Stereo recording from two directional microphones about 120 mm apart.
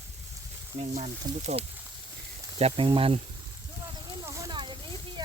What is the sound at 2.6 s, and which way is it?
Speech, 55° right (ahead or behind).